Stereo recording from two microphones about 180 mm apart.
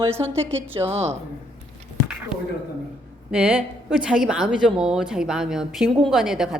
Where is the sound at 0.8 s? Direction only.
15° right (ahead or behind).